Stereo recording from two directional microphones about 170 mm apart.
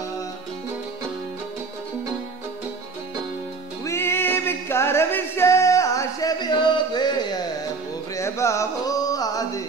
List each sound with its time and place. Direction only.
3.8 s music: 15° left (ahead or behind)
8.2 s carnatic music: 15° left (ahead or behind)